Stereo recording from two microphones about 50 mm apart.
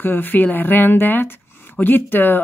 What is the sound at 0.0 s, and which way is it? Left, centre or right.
Speech, left.